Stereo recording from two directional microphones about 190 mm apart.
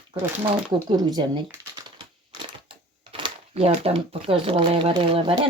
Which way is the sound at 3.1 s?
30° right (ahead or behind).